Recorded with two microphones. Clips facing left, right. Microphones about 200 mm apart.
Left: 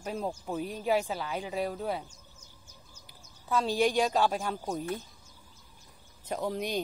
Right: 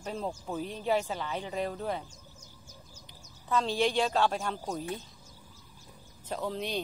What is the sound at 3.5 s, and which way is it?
Speech, 10° left (ahead or behind).